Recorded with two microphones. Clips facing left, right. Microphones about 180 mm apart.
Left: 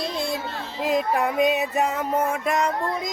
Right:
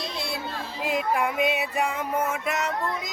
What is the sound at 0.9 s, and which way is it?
Music, 40° left (ahead or behind).